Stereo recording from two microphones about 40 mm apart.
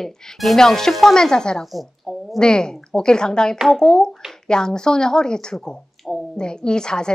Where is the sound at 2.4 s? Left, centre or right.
Centre.